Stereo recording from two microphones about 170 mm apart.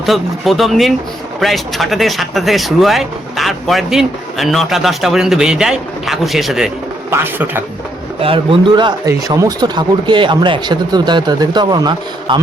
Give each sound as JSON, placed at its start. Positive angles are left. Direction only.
{"t": 0.0, "sound": "speech", "side_deg": 0}
{"t": 7.1, "sound": "speech", "side_deg": -10}
{"t": 8.2, "sound": "speech", "side_deg": -30}